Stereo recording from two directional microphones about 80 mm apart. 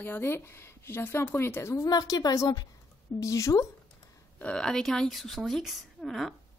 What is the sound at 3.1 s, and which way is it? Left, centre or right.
Speech, left.